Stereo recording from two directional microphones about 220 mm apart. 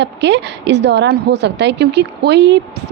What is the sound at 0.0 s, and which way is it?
A woman's voice, 50° right (ahead or behind).